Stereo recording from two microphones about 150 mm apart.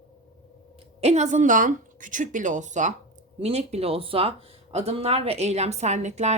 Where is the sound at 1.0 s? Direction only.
45° right (ahead or behind).